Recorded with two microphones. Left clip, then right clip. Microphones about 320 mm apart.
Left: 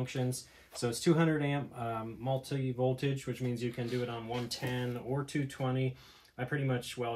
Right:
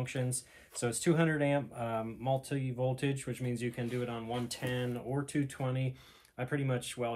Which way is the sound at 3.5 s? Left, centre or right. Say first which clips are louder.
Even; centre.